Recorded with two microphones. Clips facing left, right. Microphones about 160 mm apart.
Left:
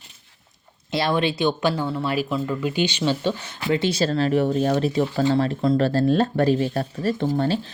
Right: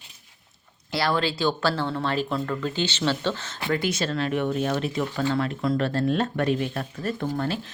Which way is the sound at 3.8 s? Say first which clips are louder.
Left 7 dB; 30° left (ahead or behind).